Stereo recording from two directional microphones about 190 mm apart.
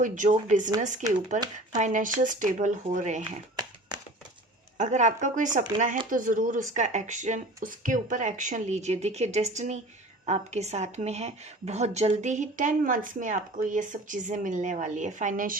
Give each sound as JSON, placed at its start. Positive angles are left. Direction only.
{"t": 0.0, "sound": "a woman's voice", "side_deg": -40}
{"t": 3.5, "sound": "a sound", "side_deg": -20}
{"t": 4.8, "sound": "a woman's voice", "side_deg": -40}